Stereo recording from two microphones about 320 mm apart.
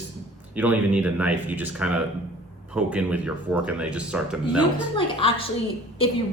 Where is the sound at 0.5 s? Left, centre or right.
Centre.